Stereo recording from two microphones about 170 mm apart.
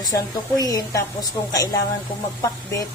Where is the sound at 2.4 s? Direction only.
20° left (ahead or behind).